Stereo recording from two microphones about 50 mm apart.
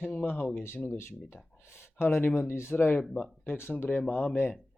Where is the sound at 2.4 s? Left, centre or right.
Left.